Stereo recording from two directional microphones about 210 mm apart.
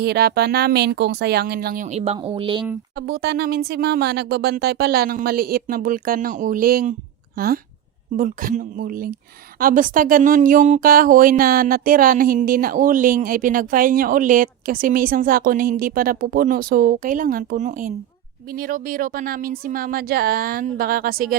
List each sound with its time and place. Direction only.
0.0 s speech: 50° right (ahead or behind); by 2.6 s 25° right (ahead or behind)
2.9 s speech: 50° right (ahead or behind)